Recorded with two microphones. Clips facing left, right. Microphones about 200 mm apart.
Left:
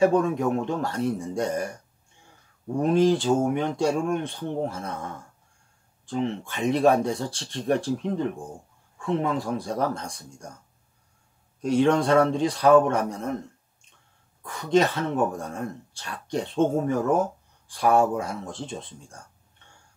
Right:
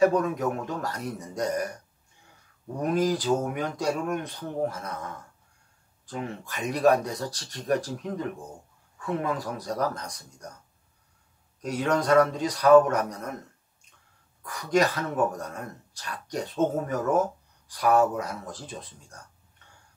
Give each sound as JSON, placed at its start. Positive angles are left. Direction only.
{"t": 0.0, "sound": "speech", "side_deg": 30}
{"t": 2.8, "sound": "speech", "side_deg": 25}
{"t": 11.6, "sound": "speech", "side_deg": 30}
{"t": 14.4, "sound": "speech", "side_deg": 25}